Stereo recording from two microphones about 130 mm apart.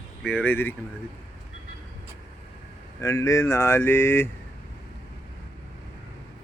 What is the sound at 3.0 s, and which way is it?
Speech, 25° left (ahead or behind).